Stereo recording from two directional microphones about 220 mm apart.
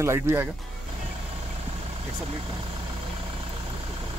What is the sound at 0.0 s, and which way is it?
Speech, 10° right (ahead or behind).